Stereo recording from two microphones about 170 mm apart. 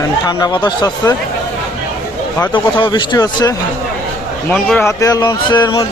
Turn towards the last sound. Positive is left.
turn(degrees=30)  # may be behind; listen again after turning